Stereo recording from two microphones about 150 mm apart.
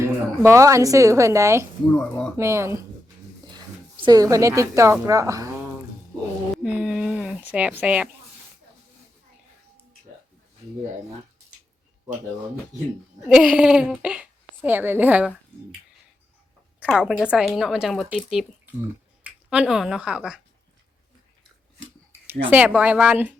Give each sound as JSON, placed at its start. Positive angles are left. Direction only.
{"t": 0.0, "sound": "a woman's voice", "side_deg": -20}
{"t": 4.0, "sound": "a woman's voice", "side_deg": -25}
{"t": 6.6, "sound": "a sound", "side_deg": -5}
{"t": 13.2, "sound": "a woman's voice", "side_deg": -5}
{"t": 16.8, "sound": "speech", "side_deg": -5}
{"t": 22.3, "sound": "a woman's voice", "side_deg": -10}